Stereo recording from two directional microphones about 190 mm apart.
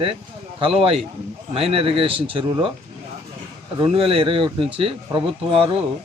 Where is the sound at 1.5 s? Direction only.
30° right (ahead or behind).